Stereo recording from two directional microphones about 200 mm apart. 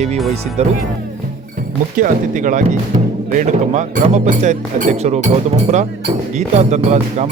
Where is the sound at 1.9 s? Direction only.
40° right (ahead or behind).